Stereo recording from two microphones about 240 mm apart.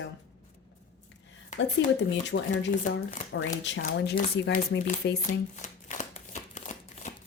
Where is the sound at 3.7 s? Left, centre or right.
Left.